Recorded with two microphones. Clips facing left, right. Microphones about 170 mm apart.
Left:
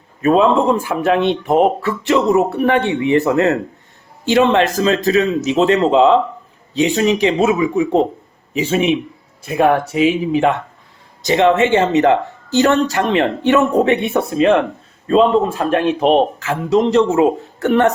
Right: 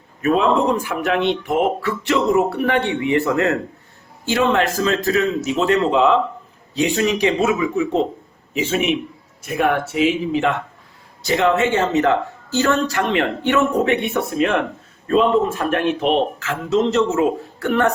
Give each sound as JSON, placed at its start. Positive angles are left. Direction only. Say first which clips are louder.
{"t": 0.2, "sound": "a sound", "louder": "left 4 dB", "side_deg": 30}
{"t": 0.9, "sound": "speech", "louder": "left 4 dB", "side_deg": 45}
{"t": 1.5, "sound": "a sound", "louder": "left 5 dB", "side_deg": 40}
{"t": 2.0, "sound": "a man's voice", "louder": "left 3 dB", "side_deg": 20}
{"t": 9.8, "sound": "a man's voice", "louder": "left 3 dB", "side_deg": 15}
{"t": 16.4, "sound": "speech", "louder": "left 3 dB", "side_deg": 15}